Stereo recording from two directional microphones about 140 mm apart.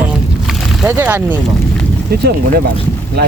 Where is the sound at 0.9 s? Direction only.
15° right (ahead or behind).